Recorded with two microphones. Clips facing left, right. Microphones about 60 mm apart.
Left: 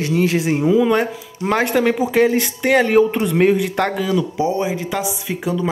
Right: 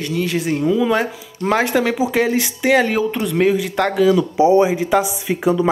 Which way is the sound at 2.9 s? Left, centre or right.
Centre.